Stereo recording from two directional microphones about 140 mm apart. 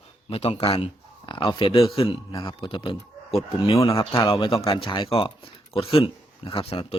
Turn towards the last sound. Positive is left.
turn(degrees=45)  # may be behind; listen again after turning